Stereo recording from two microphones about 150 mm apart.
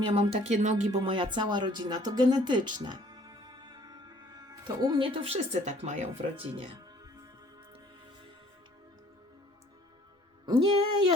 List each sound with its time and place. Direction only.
0.1 s speech: 45° right (ahead or behind)
0.9 s speech: 35° right (ahead or behind); by 6.1 s 50° right (ahead or behind)
10.4 s music: 30° right (ahead or behind)